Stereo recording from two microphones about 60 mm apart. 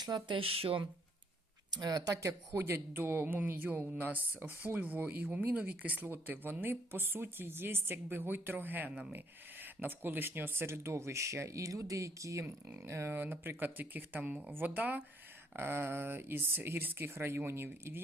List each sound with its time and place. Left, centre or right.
1.7 s speech: right
2.6 s speech: right
8.9 s speech: centre
9.1 s speech: right
12.8 s speech: right
15.5 s speech: right